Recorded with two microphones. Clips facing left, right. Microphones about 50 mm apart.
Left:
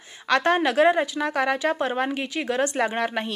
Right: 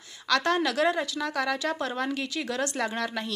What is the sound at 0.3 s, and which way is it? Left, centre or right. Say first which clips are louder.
Speech: left 4 dB; left.